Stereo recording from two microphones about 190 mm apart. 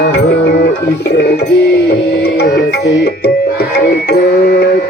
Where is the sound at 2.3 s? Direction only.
60° left (ahead or behind).